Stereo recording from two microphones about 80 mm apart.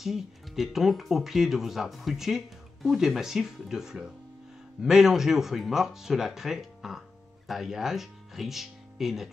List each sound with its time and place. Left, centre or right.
0.0 s speech: centre